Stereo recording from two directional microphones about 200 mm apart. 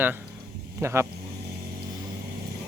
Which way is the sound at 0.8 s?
15° right (ahead or behind).